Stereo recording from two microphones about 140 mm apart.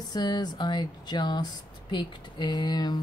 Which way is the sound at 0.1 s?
30° left (ahead or behind).